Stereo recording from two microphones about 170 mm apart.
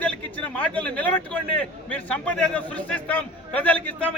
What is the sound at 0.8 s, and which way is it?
A man's voice, 10° left (ahead or behind).